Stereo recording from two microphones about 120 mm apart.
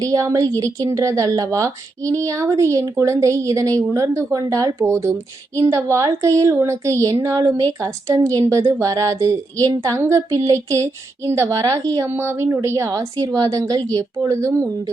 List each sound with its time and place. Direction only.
0.0 s a woman's voice: 25° right (ahead or behind)